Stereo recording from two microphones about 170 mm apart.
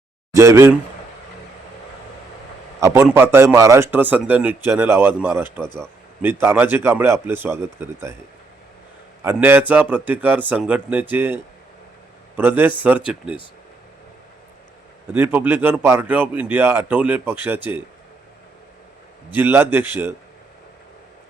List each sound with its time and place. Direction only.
0.3 s speech: 15° right (ahead or behind)
2.8 s speech: 15° right (ahead or behind)
9.2 s speech: 10° right (ahead or behind)
12.4 s speech: 10° right (ahead or behind)
15.1 s speech: 10° right (ahead or behind)
19.3 s speech: 10° right (ahead or behind)